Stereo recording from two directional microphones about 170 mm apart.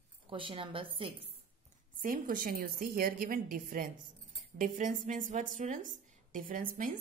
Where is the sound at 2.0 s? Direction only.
55° right (ahead or behind).